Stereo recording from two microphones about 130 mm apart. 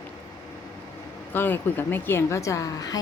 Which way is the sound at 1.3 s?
15° left (ahead or behind).